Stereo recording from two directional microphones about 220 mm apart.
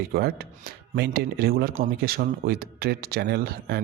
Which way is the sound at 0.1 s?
45° right (ahead or behind).